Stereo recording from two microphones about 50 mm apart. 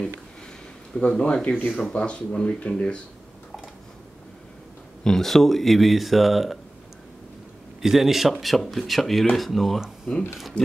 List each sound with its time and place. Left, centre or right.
0.9 s speech: centre
1.4 s speech: left
5.0 s speech: centre
7.8 s speech: centre
10.1 s speech: left